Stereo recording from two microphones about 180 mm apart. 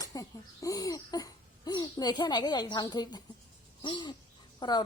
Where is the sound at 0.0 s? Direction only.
20° left (ahead or behind).